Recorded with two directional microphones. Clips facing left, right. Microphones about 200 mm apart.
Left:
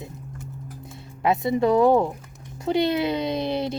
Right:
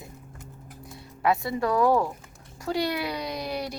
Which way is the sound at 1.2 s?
20° left (ahead or behind).